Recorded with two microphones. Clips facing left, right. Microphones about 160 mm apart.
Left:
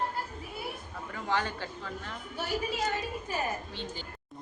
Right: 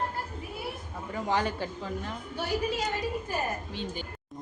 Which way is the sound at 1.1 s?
15° right (ahead or behind).